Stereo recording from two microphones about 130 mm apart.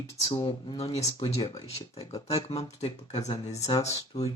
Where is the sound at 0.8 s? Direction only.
50° left (ahead or behind).